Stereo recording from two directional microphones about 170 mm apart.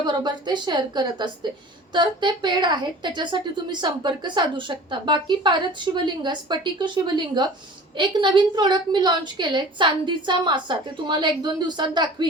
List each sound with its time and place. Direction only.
0.0 s a woman's voice: 25° right (ahead or behind)